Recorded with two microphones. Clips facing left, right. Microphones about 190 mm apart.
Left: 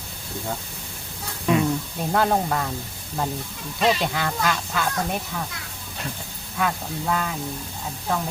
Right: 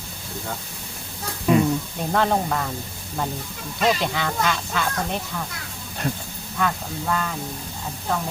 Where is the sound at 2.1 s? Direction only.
5° left (ahead or behind).